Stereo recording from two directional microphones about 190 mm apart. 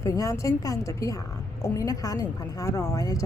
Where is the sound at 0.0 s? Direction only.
15° left (ahead or behind).